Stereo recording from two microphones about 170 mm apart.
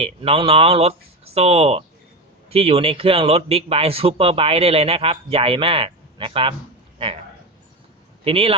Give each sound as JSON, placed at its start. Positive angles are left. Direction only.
{"t": 0.0, "sound": "a man's voice", "side_deg": -35}
{"t": 8.2, "sound": "a man's voice", "side_deg": -35}